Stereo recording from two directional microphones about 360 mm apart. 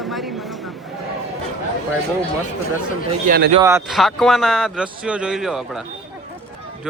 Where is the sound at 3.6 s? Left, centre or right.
Centre.